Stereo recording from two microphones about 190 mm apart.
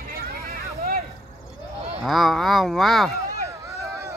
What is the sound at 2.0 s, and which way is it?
Speech, centre (ahead or behind).